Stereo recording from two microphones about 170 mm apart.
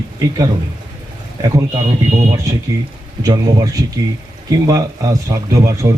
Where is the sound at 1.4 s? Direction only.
20° right (ahead or behind).